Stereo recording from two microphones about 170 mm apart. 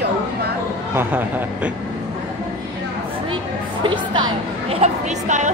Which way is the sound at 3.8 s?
30° right (ahead or behind).